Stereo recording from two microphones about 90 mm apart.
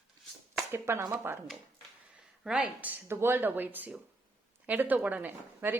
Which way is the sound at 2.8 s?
25° right (ahead or behind).